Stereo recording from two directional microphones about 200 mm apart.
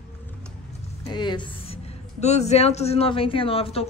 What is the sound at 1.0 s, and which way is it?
A woman's voice, 20° left (ahead or behind).